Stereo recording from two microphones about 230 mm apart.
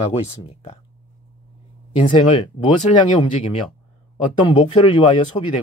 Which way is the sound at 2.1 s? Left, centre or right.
Left.